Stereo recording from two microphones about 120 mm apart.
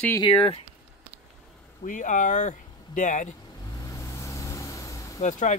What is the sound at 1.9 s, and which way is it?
Speech, 90° left.